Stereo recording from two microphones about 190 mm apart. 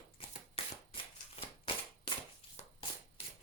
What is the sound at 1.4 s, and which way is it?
Cap gun, 30° left (ahead or behind).